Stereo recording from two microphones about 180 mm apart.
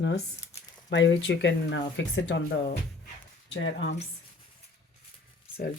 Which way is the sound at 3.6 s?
90° left.